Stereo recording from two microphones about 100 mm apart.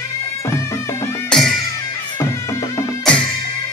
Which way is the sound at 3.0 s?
10° left (ahead or behind).